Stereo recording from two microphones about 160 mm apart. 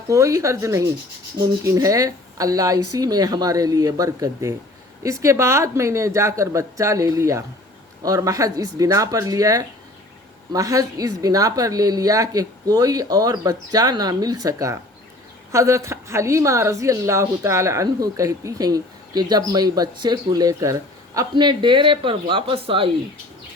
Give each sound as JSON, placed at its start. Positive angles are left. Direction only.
{"t": 0.1, "sound": "a woman's voice", "side_deg": -20}